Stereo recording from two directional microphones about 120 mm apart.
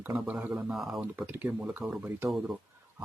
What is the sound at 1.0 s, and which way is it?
Speech, 15° right (ahead or behind).